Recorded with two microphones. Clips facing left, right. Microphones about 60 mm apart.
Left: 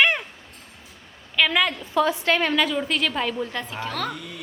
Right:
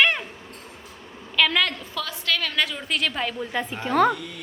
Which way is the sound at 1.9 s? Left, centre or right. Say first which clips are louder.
Left 7 dB; left.